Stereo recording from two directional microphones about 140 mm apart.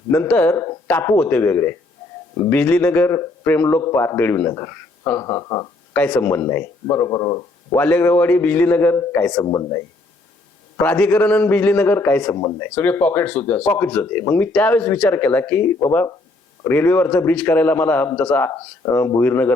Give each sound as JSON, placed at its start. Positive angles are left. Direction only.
{"t": 0.1, "sound": "speech", "side_deg": 10}
{"t": 5.9, "sound": "speech", "side_deg": 10}
{"t": 7.8, "sound": "speech", "side_deg": 10}
{"t": 10.8, "sound": "speech", "side_deg": 10}
{"t": 12.4, "sound": "speech", "side_deg": 20}